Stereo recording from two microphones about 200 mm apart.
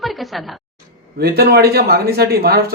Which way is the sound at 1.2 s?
50° right (ahead or behind).